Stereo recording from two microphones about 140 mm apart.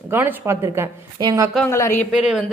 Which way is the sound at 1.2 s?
30° right (ahead or behind).